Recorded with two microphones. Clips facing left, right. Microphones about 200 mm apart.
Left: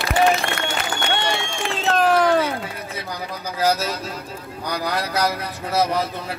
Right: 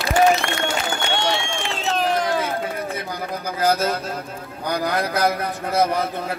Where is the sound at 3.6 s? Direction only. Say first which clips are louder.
Right 1 dB; 55° right (ahead or behind).